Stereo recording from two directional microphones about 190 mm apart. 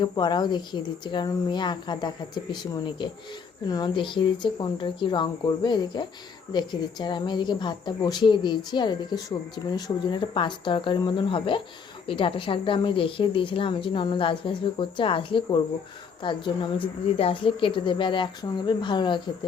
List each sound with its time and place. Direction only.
0.0 s a woman's voice: 25° left (ahead or behind)